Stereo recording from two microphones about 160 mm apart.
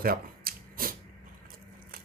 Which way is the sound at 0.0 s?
65° right (ahead or behind).